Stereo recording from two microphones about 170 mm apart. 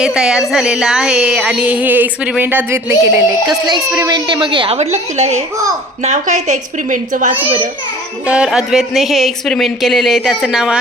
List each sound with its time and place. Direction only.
0.0 s a woman's voice: 5° right (ahead or behind); by 7.3 s 50° right (ahead or behind)
8.3 s speech: 5° right (ahead or behind)